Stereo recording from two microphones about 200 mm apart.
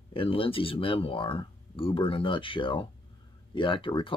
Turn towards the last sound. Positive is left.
turn(degrees=25)  # may be behind; listen again after turning